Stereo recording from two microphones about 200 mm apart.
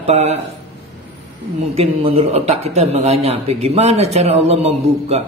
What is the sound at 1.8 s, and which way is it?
Speech, 30° right (ahead or behind).